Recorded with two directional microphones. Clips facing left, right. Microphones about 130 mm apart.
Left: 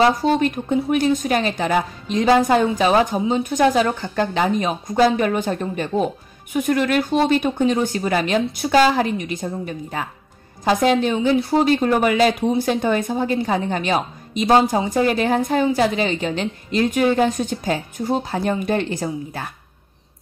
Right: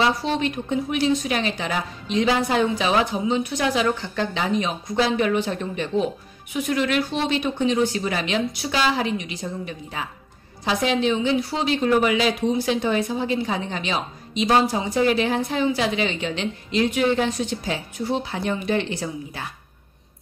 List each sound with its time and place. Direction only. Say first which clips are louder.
0.0 s a woman's voice: left 5 dB; 45° left (ahead or behind)